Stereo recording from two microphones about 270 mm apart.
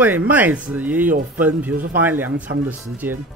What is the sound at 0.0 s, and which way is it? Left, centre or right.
Speech, centre.